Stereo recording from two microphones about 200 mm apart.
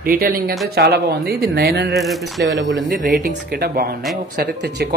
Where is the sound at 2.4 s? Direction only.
65° right (ahead or behind).